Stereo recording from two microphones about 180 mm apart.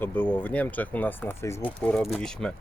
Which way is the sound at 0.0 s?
10° left (ahead or behind).